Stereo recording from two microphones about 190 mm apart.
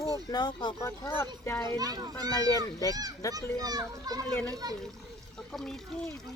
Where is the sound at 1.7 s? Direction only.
20° right (ahead or behind).